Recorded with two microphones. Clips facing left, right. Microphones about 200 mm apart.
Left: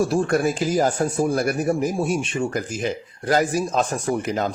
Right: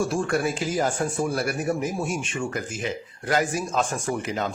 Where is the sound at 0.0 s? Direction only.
35° left (ahead or behind).